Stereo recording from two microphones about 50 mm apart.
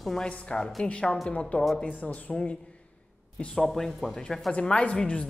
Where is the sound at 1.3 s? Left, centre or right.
Left.